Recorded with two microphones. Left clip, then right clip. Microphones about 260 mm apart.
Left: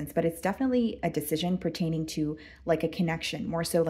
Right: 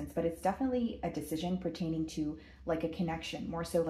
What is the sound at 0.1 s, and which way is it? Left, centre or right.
Speech, left.